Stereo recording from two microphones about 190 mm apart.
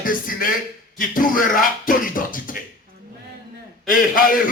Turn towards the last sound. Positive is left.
turn(degrees=45)  # may be behind; listen again after turning